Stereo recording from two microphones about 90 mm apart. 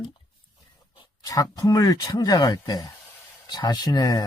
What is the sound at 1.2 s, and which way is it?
Speech, 45° left (ahead or behind).